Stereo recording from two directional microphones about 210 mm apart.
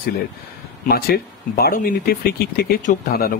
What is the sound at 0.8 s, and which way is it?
Speech, 45° left (ahead or behind).